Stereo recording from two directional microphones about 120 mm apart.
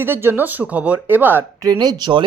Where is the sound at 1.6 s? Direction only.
35° right (ahead or behind).